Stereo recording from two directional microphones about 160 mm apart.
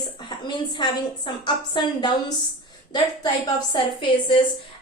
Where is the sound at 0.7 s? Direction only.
30° left (ahead or behind).